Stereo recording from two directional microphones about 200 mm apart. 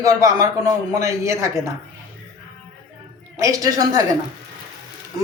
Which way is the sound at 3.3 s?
15° right (ahead or behind).